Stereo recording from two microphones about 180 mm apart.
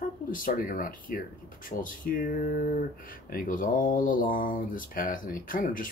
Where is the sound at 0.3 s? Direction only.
50° left (ahead or behind).